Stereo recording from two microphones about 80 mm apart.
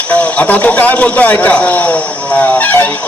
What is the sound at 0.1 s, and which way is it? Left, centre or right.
A man's voice, centre.